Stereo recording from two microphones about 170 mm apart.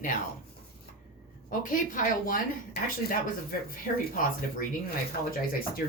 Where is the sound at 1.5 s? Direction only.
50° left (ahead or behind).